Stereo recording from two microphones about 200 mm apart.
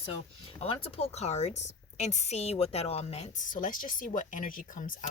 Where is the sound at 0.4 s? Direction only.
30° left (ahead or behind).